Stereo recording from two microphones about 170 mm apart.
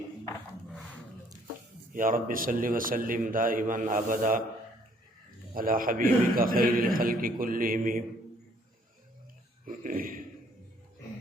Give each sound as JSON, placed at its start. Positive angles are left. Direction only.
{"t": 1.9, "sound": "a man's voice", "side_deg": -55}
{"t": 5.5, "sound": "a man's voice", "side_deg": -55}
{"t": 9.6, "sound": "burping", "side_deg": -55}